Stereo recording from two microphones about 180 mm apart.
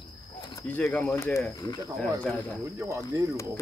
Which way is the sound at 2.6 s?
15° right (ahead or behind).